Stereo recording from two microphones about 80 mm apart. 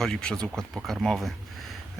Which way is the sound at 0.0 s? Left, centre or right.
Centre.